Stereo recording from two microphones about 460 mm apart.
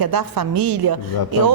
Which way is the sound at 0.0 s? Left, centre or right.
Right.